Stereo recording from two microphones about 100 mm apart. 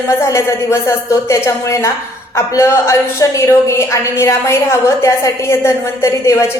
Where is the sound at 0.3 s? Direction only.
30° left (ahead or behind).